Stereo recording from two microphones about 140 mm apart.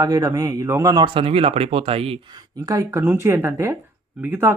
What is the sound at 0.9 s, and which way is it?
Speech, 40° right (ahead or behind).